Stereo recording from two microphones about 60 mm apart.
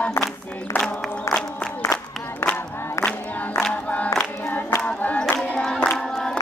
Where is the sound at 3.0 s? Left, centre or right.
Left.